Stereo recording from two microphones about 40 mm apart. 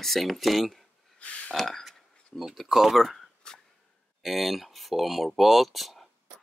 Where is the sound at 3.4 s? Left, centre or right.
Left.